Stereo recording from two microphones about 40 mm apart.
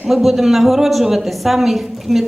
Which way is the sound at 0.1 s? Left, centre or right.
Centre.